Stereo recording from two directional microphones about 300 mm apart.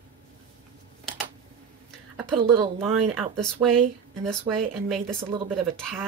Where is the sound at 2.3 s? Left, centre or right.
Centre.